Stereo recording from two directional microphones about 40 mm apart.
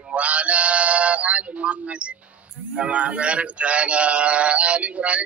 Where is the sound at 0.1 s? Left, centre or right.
Right.